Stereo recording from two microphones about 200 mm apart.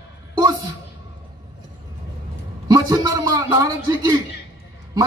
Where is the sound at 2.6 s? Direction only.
20° right (ahead or behind).